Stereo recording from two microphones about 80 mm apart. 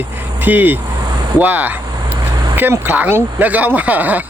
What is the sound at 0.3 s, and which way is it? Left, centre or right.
Speech, right.